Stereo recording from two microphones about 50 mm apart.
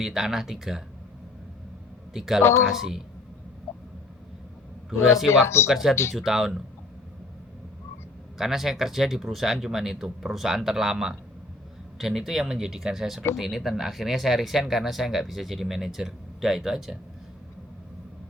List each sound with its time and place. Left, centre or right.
0.0 s speech: centre
2.1 s speech: centre
4.9 s speech: centre
5.3 s speech: left
5.6 s speech: centre
8.4 s speech: centre